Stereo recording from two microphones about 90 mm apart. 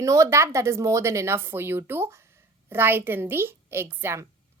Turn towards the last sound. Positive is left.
turn(degrees=-30)  # may be behind; listen again after turning